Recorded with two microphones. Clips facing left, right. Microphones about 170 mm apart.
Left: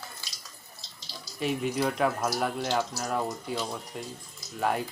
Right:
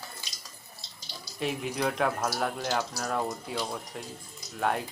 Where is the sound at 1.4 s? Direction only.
Centre (ahead or behind).